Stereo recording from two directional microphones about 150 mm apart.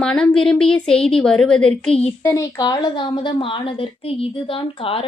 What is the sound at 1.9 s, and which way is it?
Speech, 45° left (ahead or behind).